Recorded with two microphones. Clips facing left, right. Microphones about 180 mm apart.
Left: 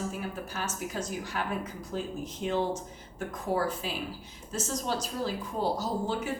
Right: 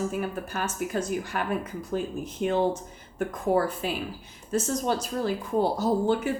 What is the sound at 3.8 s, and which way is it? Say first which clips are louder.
Speech: right 5 dB; 55° right (ahead or behind).